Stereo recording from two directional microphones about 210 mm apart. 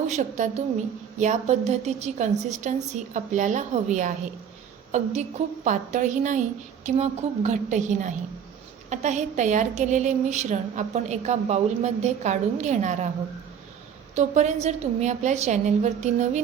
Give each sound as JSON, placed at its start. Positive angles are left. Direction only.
{"t": 0.1, "sound": "a woman's voice", "side_deg": -35}
{"t": 14.2, "sound": "a woman's voice", "side_deg": -35}